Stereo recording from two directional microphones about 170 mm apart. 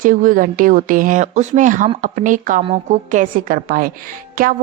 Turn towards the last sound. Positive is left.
turn(degrees=-60)  # may be behind; listen again after turning